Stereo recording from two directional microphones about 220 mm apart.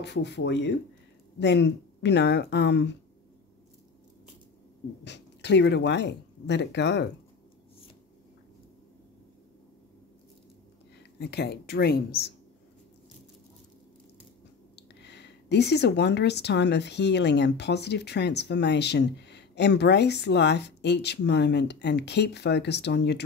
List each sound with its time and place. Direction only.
0.0 s speech: 50° left (ahead or behind)
5.0 s speech: 50° left (ahead or behind)
11.1 s speech: 50° left (ahead or behind)
15.0 s speech: 50° left (ahead or behind)